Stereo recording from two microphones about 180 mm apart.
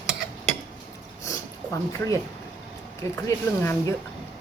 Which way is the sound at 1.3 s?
15° left (ahead or behind).